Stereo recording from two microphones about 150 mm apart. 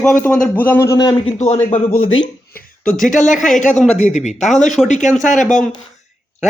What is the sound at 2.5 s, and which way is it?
Speech, 65° left (ahead or behind).